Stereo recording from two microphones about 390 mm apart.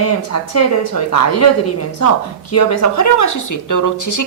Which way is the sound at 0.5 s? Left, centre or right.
Left.